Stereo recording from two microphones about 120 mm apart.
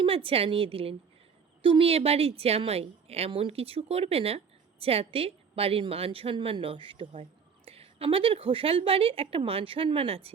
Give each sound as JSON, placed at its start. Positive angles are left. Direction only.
{"t": 0.0, "sound": "a woman's voice", "side_deg": -50}